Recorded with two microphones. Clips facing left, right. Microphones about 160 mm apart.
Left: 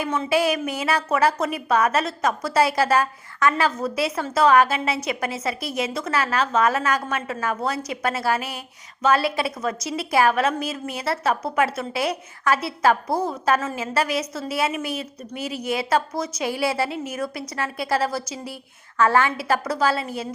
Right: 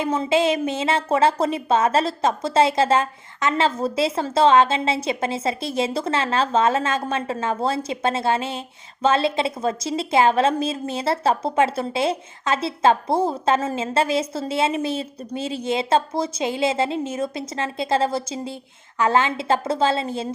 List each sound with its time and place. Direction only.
0.0 s a woman's voice: 25° right (ahead or behind)